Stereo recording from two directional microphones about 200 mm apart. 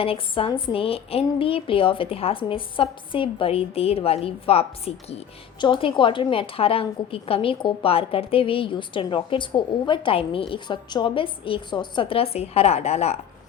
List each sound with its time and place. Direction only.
0.0 s speech: 25° left (ahead or behind)